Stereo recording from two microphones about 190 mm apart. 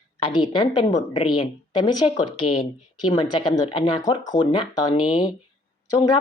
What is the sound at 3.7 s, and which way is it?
Speech, 25° left (ahead or behind).